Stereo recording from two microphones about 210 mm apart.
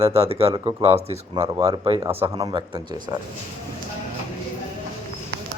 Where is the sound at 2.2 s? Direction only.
15° right (ahead or behind).